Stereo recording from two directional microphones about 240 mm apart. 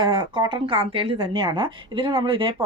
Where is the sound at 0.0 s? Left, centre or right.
Centre.